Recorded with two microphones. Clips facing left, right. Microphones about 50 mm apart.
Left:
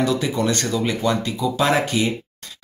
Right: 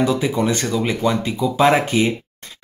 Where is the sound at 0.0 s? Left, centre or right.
Centre.